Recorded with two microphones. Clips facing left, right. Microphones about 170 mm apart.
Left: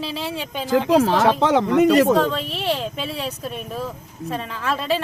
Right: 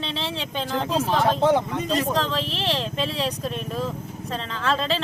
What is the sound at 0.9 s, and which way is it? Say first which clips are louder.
Speech: left 5 dB; 90° left.